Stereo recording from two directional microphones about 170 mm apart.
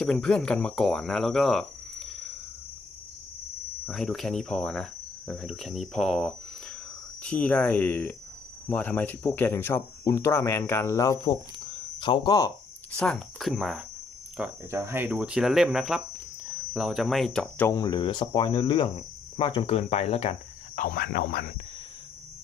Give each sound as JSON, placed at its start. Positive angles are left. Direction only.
{"t": 0.0, "sound": "cricket", "side_deg": 5}
{"t": 3.8, "sound": "cricket", "side_deg": 0}
{"t": 7.2, "sound": "speech", "side_deg": 5}
{"t": 13.0, "sound": "speech", "side_deg": 0}
{"t": 17.7, "sound": "speech", "side_deg": 25}
{"t": 20.7, "sound": "speech", "side_deg": 55}